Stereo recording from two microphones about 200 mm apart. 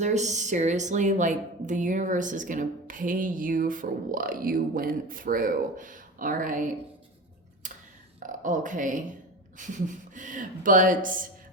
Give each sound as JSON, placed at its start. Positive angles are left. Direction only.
{"t": 0.0, "sound": "a woman's voice", "side_deg": -35}
{"t": 8.2, "sound": "a woman's voice", "side_deg": -40}